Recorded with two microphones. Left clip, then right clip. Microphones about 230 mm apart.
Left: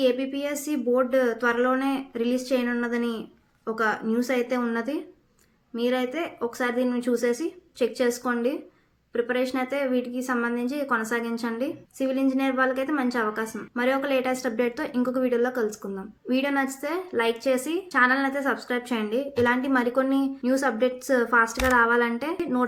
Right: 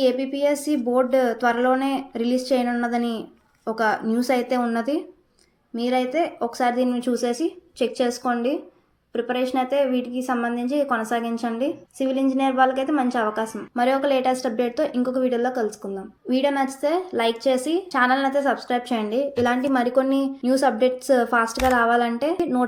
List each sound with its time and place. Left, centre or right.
0.0 s a woman's voice: centre